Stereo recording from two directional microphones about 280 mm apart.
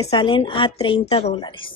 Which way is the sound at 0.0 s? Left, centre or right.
Centre.